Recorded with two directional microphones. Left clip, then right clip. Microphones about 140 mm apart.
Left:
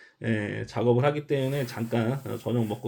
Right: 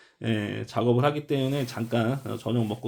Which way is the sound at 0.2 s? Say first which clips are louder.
Even; 25° right (ahead or behind).